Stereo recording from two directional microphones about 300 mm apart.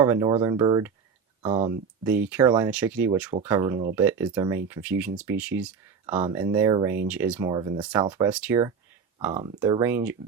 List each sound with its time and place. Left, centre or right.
0.0 s speech: centre